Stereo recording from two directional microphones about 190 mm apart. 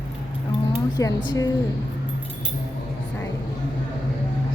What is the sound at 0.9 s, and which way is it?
Speech, 20° left (ahead or behind).